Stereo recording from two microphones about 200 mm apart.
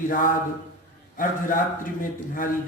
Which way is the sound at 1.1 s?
45° left (ahead or behind).